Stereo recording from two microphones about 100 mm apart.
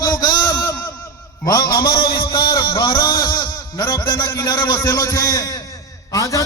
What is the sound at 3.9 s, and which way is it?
Speech, 50° left (ahead or behind).